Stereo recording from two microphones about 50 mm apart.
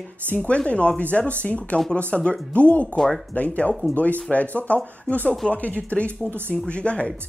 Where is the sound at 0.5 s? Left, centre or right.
Left.